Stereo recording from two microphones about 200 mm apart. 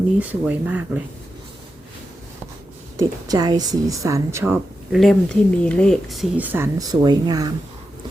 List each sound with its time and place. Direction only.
0.2 s a woman's voice: 10° right (ahead or behind)
3.0 s a woman's voice: 20° right (ahead or behind)
4.9 s speech: centre (ahead or behind); by 7.5 s 20° right (ahead or behind)